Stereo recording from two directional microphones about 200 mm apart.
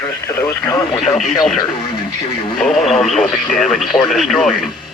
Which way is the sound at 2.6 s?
Centre (ahead or behind).